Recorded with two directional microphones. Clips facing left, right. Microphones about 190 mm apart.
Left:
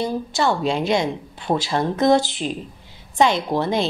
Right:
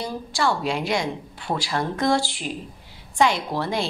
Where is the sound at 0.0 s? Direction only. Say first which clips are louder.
Left 4 dB; 20° left (ahead or behind).